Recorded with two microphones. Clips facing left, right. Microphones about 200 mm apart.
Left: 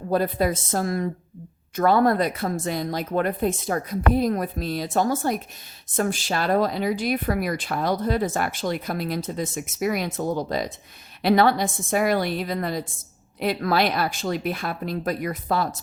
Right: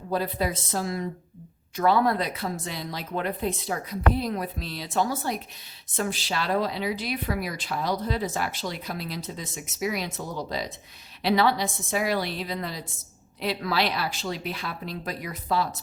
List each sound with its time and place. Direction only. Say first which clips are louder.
0.1 s speech: left 5 dB; 50° left (ahead or behind)